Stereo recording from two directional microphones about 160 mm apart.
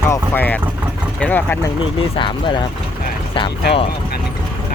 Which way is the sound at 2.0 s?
30° left (ahead or behind).